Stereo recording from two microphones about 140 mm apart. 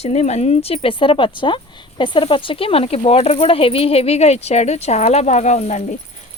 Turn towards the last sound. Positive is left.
turn(degrees=55)  # may be behind; listen again after turning